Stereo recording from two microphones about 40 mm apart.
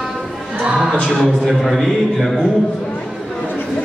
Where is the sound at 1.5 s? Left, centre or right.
Centre.